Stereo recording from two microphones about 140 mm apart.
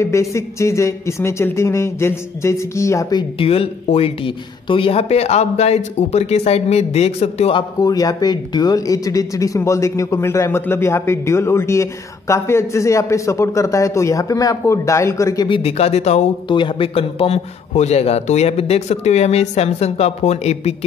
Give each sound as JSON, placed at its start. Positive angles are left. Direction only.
{"t": 0.0, "sound": "speech", "side_deg": 20}
{"t": 7.8, "sound": "speech", "side_deg": 25}
{"t": 15.4, "sound": "a man's voice", "side_deg": 40}
{"t": 16.4, "sound": "a man's voice", "side_deg": 35}